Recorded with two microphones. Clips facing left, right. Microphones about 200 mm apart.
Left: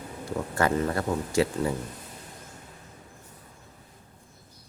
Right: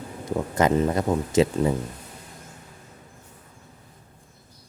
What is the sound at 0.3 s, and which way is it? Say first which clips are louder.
Speech: right 4 dB; 20° right (ahead or behind).